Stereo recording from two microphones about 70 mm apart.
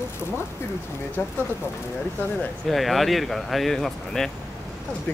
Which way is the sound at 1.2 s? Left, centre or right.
Left.